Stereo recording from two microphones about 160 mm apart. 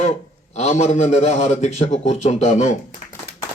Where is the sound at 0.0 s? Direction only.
45° left (ahead or behind).